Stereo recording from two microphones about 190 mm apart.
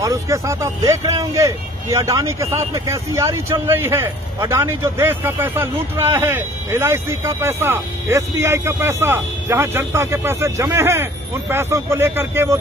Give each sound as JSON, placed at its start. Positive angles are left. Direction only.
{"t": 0.0, "sound": "speech", "side_deg": -15}